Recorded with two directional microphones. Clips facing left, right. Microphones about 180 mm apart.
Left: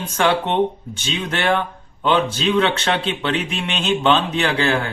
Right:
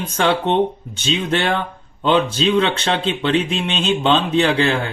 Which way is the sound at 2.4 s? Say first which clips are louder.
Right 1 dB; 20° right (ahead or behind).